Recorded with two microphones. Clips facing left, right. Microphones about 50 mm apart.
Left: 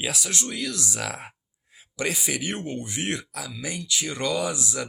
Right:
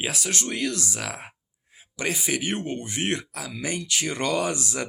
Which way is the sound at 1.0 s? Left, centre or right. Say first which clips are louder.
Left 1 dB; right.